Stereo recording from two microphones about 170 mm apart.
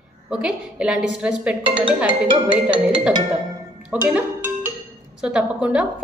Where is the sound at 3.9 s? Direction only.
10° right (ahead or behind).